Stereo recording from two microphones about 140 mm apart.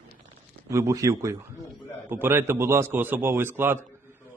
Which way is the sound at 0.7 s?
20° right (ahead or behind).